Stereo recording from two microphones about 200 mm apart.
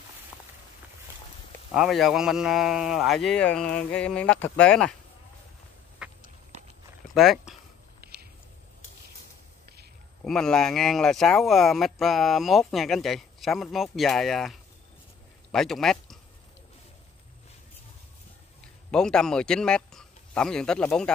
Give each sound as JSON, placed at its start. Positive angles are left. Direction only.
{"t": 1.7, "sound": "speech", "side_deg": 0}
{"t": 6.0, "sound": "walk", "side_deg": -5}
{"t": 7.2, "sound": "speech", "side_deg": 0}
{"t": 8.0, "sound": "a sound", "side_deg": -50}
{"t": 10.2, "sound": "speech", "side_deg": 5}
{"t": 18.9, "sound": "speech", "side_deg": 5}